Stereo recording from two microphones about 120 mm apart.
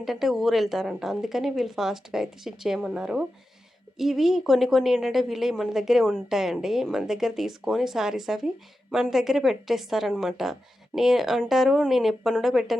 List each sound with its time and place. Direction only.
0.0 s a woman's voice: centre (ahead or behind)